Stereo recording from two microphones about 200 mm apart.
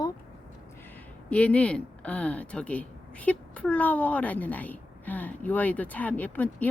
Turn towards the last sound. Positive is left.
turn(degrees=10)  # may be behind; listen again after turning